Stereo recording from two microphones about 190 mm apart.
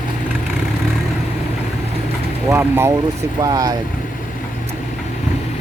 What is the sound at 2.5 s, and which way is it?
Speech, 15° right (ahead or behind).